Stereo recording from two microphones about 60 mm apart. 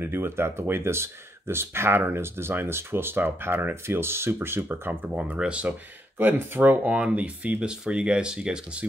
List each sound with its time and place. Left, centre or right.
0.0 s speech: right
5.1 s speech: centre
5.7 s speech: right
6.9 s speech: right